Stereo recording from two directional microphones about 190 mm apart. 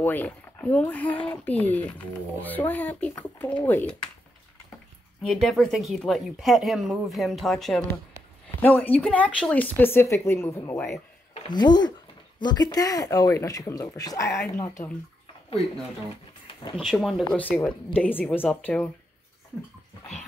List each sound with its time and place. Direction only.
0.0 s speech: 10° left (ahead or behind)
5.2 s speech: centre (ahead or behind)
11.3 s speech: 20° left (ahead or behind)
16.7 s speech: centre (ahead or behind)